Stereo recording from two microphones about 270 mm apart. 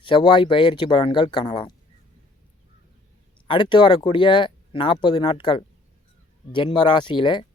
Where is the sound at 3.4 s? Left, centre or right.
Centre.